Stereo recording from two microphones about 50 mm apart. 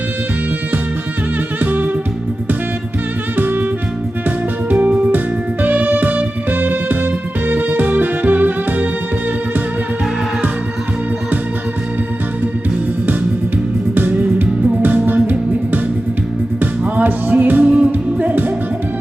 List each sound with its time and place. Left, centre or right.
1.6 s music: right
3.3 s music: right
4.7 s music: right
13.9 s music: right